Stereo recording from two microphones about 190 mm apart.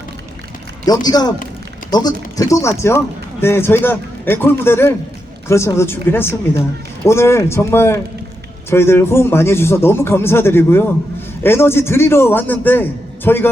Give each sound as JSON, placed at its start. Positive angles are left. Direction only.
{"t": 0.9, "sound": "speech", "side_deg": 20}